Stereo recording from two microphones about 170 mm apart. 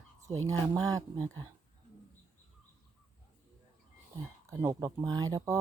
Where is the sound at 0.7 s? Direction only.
20° right (ahead or behind).